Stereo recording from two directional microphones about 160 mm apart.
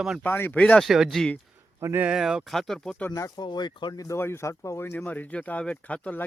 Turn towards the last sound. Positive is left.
turn(degrees=10)  # may be behind; listen again after turning